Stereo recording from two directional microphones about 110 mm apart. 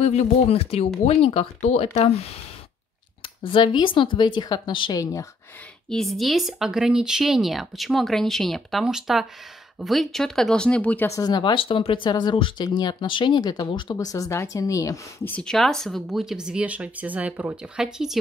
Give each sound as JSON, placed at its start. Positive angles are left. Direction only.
{"t": 0.0, "sound": "speech", "side_deg": 75}
{"t": 3.4, "sound": "speech", "side_deg": 50}
{"t": 4.9, "sound": "a woman's voice", "side_deg": 30}
{"t": 5.9, "sound": "speech", "side_deg": 0}
{"t": 11.1, "sound": "speech", "side_deg": 35}
{"t": 13.9, "sound": "a woman's voice", "side_deg": 30}
{"t": 15.2, "sound": "speech", "side_deg": 10}